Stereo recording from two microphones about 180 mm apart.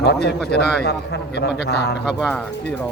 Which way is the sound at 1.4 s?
65° left (ahead or behind).